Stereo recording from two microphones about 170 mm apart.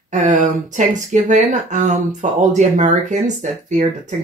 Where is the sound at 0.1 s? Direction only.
45° right (ahead or behind).